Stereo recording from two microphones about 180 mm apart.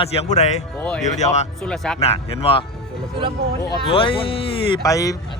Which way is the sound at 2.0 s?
35° left (ahead or behind).